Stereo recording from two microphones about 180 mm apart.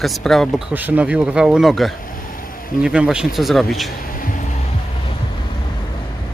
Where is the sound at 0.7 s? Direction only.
10° right (ahead or behind).